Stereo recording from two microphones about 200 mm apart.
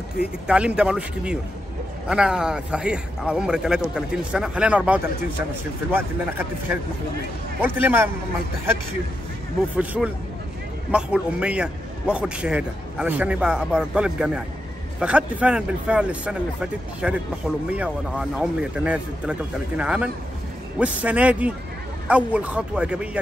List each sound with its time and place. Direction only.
0.5 s a man's voice: 5° right (ahead or behind)
7.6 s a man's voice: 10° right (ahead or behind)
9.8 s a man's voice: 5° right (ahead or behind)